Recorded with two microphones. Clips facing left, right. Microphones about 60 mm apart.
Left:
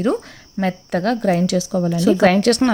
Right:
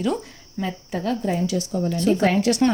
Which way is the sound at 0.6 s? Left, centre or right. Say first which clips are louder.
Left 7 dB; left.